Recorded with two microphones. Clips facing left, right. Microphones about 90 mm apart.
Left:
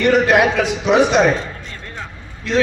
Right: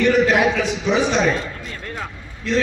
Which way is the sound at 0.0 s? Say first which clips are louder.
Left 2 dB; 65° left (ahead or behind).